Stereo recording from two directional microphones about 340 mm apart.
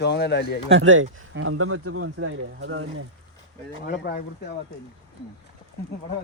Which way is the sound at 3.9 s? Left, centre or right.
Left.